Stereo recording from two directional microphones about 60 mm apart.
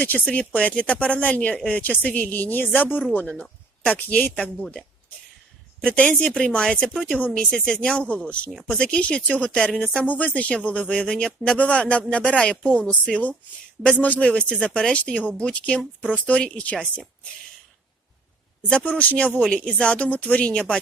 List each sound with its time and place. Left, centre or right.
0.0 s a woman's voice: left
4.6 s speech: centre
6.9 s speech: centre
7.2 s a woman's voice: left
7.5 s a woman's voice: centre
18.9 s a woman's voice: left